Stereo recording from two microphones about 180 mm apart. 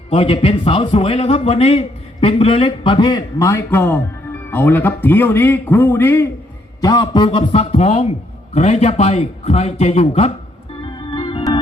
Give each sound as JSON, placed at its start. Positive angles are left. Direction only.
{"t": 0.1, "sound": "a man's voice", "side_deg": 30}
{"t": 6.8, "sound": "a man's voice", "side_deg": 20}
{"t": 10.8, "sound": "organ", "side_deg": 25}